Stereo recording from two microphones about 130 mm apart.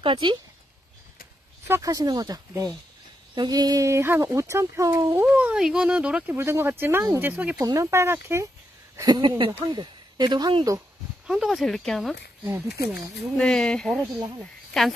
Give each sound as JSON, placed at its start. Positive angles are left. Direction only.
{"t": 0.0, "sound": "speech", "side_deg": -40}
{"t": 1.7, "sound": "speech", "side_deg": -25}
{"t": 5.2, "sound": "speech", "side_deg": -10}
{"t": 6.3, "sound": "speech", "side_deg": -20}
{"t": 7.5, "sound": "speech", "side_deg": -25}
{"t": 8.9, "sound": "speech", "side_deg": -30}
{"t": 11.2, "sound": "speech", "side_deg": -5}
{"t": 12.4, "sound": "speech", "side_deg": -20}
{"t": 12.8, "sound": "speech", "side_deg": 0}